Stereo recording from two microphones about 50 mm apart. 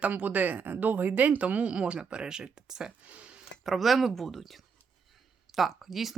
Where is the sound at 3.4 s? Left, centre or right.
Centre.